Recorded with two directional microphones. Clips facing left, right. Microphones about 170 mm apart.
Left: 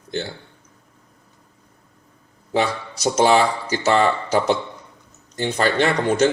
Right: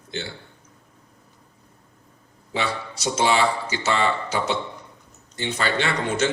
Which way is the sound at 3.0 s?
45° left (ahead or behind).